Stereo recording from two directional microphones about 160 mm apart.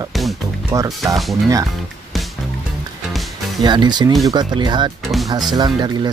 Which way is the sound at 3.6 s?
25° right (ahead or behind).